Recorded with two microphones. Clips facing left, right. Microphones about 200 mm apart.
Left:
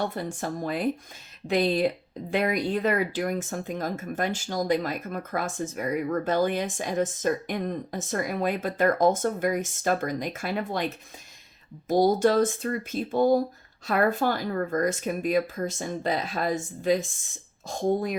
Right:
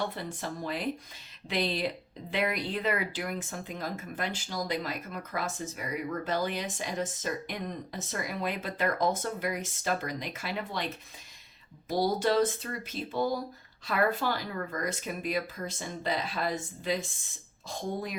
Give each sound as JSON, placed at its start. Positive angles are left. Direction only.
{"t": 0.0, "sound": "speech", "side_deg": 45}
{"t": 11.9, "sound": "speech", "side_deg": 45}